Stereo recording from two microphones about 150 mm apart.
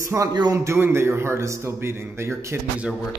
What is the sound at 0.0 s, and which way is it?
A man's voice, 20° right (ahead or behind).